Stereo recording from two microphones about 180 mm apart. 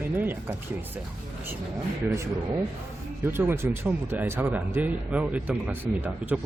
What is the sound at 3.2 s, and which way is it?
Speech, 10° right (ahead or behind).